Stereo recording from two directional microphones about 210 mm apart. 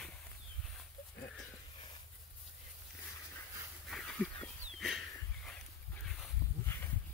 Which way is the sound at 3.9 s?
Centre (ahead or behind).